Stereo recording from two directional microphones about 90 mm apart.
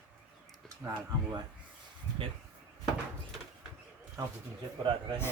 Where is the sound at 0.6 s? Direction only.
35° right (ahead or behind).